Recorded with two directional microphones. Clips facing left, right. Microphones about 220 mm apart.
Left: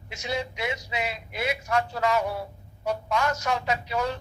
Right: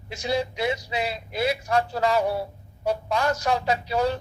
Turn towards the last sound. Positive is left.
turn(degrees=-35)  # may be behind; listen again after turning